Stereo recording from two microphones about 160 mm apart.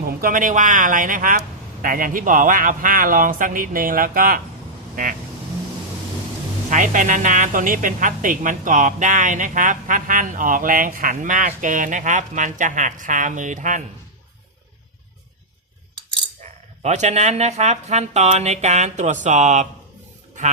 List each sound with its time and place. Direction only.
0.0 s speech: 60° right (ahead or behind)
6.7 s a woman's voice: 55° right (ahead or behind)
16.4 s a woman's voice: 45° right (ahead or behind)